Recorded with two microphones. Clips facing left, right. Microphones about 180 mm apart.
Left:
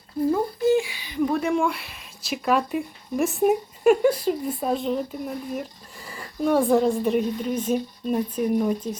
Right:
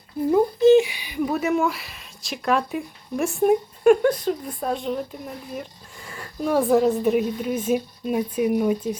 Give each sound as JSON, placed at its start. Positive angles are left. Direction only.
{"t": 0.6, "sound": "speech", "side_deg": -20}